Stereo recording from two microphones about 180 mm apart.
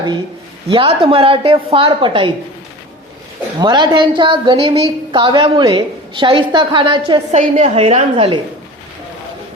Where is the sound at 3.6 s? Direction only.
25° right (ahead or behind).